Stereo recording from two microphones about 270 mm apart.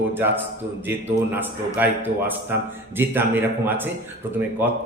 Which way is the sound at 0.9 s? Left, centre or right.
Centre.